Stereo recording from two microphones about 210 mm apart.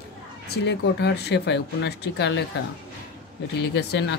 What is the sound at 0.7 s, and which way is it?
Speech, 55° left (ahead or behind).